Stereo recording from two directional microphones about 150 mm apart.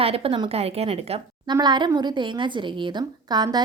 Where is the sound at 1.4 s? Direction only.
30° right (ahead or behind).